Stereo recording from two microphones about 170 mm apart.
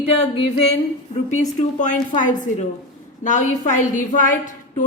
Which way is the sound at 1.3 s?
45° left (ahead or behind).